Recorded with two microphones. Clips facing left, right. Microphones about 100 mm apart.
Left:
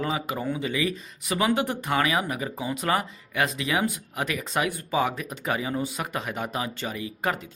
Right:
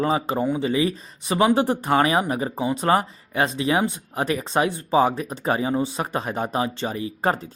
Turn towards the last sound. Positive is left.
turn(degrees=-35)  # may be behind; listen again after turning